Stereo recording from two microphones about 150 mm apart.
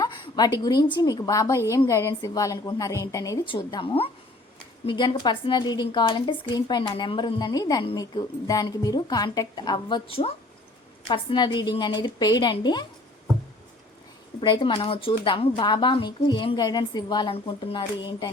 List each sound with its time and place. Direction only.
0.0 s a woman's voice: 25° left (ahead or behind)
3.4 s a woman's voice: 35° left (ahead or behind)
14.4 s a woman's voice: 30° left (ahead or behind)